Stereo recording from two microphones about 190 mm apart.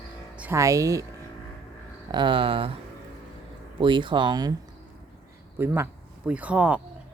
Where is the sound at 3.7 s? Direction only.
25° right (ahead or behind).